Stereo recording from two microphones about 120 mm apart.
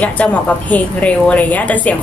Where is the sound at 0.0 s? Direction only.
10° left (ahead or behind).